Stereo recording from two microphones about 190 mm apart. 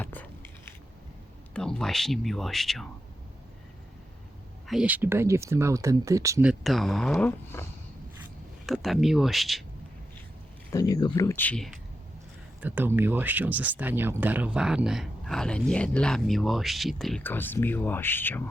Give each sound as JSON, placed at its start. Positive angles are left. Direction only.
{"t": 0.0, "sound": "a sound", "side_deg": 10}
{"t": 1.5, "sound": "speech", "side_deg": 5}
{"t": 4.6, "sound": "speech", "side_deg": -5}
{"t": 6.5, "sound": "speech", "side_deg": 0}
{"t": 8.6, "sound": "speech", "side_deg": 0}
{"t": 10.7, "sound": "speech", "side_deg": 20}
{"t": 12.5, "sound": "speech", "side_deg": -10}